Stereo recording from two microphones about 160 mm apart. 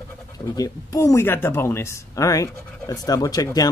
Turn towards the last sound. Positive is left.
turn(degrees=25)  # may be behind; listen again after turning